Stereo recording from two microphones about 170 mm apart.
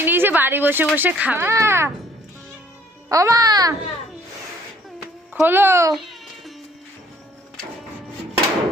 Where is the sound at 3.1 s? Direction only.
20° right (ahead or behind).